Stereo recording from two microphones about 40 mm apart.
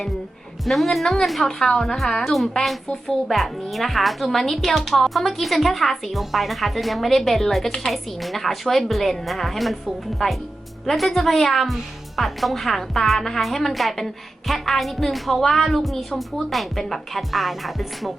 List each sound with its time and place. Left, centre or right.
0.6 s speech: centre
1.5 s a woman's voice: centre
2.6 s speech: centre